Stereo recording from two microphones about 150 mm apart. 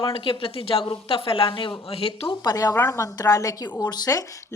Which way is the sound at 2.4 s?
25° left (ahead or behind).